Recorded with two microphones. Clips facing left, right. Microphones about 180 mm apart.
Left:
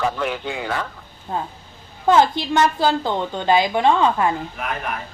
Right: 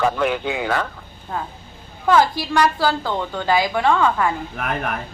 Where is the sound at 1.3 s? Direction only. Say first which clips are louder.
Left 2 dB; 20° left (ahead or behind).